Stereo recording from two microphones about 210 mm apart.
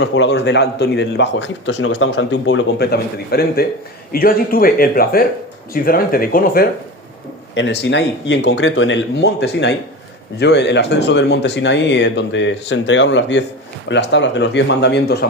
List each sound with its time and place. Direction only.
0.0 s a man's voice: 60° left (ahead or behind)
7.5 s speech: 55° left (ahead or behind)